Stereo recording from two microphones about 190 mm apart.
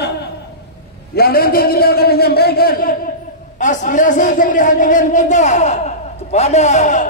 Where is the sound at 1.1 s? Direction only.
55° left (ahead or behind).